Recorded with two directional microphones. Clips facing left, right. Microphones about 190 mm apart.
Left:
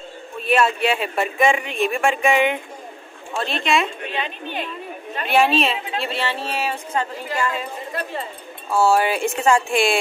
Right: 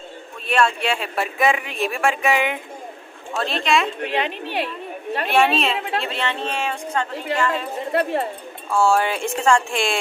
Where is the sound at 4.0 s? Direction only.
80° right.